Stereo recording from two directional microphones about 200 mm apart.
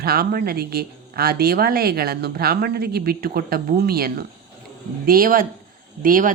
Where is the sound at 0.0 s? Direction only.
50° right (ahead or behind).